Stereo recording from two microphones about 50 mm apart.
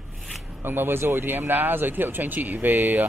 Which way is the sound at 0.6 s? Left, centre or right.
Right.